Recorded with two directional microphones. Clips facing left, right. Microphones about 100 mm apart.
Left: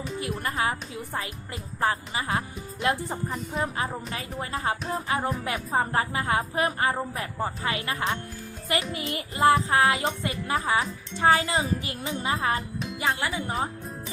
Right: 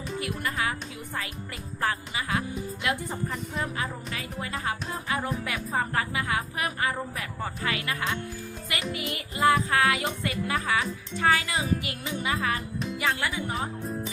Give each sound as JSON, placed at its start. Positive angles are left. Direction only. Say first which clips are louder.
{"t": 0.2, "sound": "a child's voice", "louder": "left 2 dB", "side_deg": 30}